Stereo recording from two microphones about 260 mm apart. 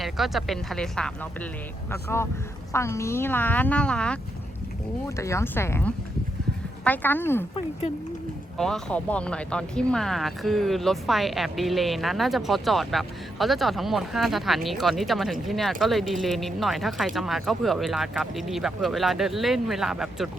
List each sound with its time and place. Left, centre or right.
0.0 s speech: centre
8.5 s speech: centre